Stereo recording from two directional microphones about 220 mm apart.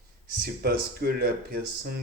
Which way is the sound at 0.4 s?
45° right (ahead or behind).